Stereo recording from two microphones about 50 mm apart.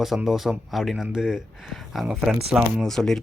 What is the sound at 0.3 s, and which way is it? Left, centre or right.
Speech, centre.